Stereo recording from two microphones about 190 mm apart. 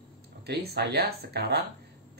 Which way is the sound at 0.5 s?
55° right (ahead or behind).